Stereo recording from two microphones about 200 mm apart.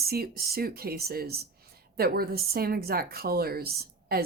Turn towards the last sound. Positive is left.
turn(degrees=-50)  # may be behind; listen again after turning